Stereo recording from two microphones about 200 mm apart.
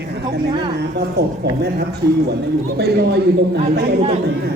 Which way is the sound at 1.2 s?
55° right (ahead or behind).